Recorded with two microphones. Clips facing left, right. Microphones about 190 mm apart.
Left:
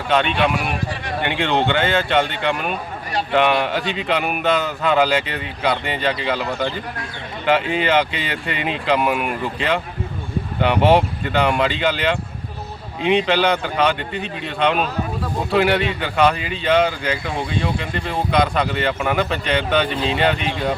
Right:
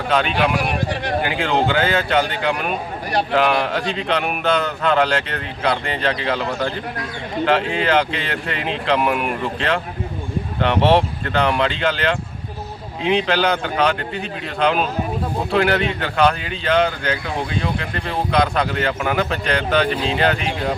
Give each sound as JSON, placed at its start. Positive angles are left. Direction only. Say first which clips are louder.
{"t": 0.1, "sound": "speech", "louder": "left 1 dB", "side_deg": 0}